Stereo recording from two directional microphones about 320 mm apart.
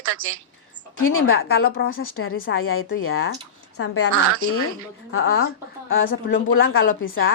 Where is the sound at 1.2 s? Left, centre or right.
Left.